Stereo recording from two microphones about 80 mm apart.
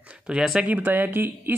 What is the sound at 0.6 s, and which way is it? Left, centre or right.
Speech, right.